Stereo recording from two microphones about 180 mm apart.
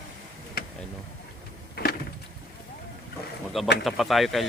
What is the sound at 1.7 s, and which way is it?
Vehicle, 55° left (ahead or behind).